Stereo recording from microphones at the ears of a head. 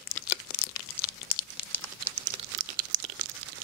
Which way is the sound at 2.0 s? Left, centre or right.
Right.